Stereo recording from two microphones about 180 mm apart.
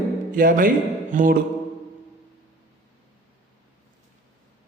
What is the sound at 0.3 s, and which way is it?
Speech, 50° right (ahead or behind).